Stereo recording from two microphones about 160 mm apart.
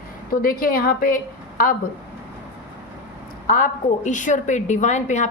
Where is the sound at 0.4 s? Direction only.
65° left (ahead or behind).